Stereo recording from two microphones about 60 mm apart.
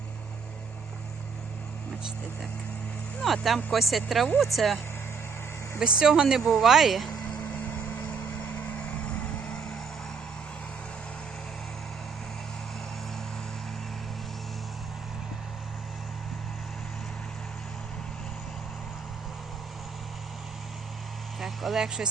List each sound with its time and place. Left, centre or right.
3.2 s speech: centre
5.8 s speech: centre
6.4 s speech: centre
6.7 s speech: centre
7.3 s vehicle: left
9.0 s music: centre
21.4 s vehicle: centre